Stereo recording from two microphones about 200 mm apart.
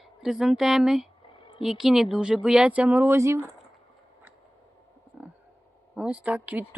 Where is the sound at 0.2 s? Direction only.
Centre (ahead or behind).